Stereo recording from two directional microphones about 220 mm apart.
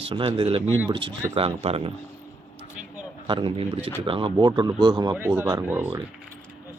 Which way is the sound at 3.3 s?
25° right (ahead or behind).